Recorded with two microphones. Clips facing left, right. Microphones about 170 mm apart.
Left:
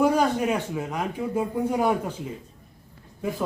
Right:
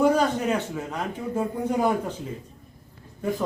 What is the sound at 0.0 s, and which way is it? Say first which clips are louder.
Speech: even; 10° left (ahead or behind).